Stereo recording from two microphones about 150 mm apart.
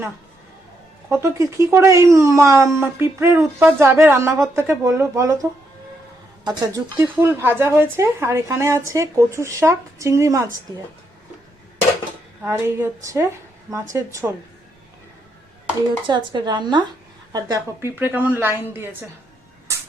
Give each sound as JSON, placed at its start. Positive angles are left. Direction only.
{"t": 1.2, "sound": "speech", "side_deg": -20}
{"t": 6.9, "sound": "speech", "side_deg": -15}
{"t": 12.5, "sound": "speech", "side_deg": -20}
{"t": 16.0, "sound": "a woman's voice", "side_deg": -30}